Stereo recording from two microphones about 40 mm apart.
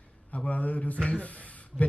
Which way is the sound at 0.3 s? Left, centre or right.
Left.